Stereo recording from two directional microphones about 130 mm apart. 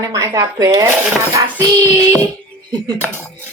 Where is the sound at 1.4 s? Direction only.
30° right (ahead or behind).